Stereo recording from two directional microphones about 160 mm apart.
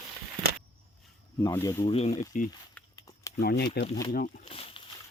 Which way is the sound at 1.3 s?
20° left (ahead or behind).